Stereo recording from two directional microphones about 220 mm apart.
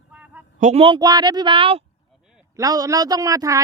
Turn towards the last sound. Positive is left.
turn(degrees=-15)  # may be behind; listen again after turning